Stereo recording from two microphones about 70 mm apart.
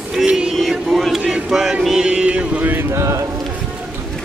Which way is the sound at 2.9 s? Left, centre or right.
Right.